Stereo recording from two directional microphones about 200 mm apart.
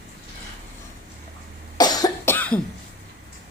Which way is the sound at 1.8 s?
20° left (ahead or behind).